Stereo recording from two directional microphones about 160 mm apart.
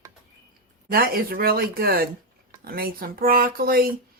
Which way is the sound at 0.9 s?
65° right (ahead or behind).